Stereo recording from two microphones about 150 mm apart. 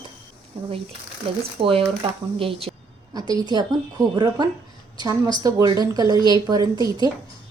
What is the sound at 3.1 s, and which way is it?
Speech, 25° right (ahead or behind).